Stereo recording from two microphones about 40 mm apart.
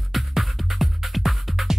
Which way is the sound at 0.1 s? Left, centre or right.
Centre.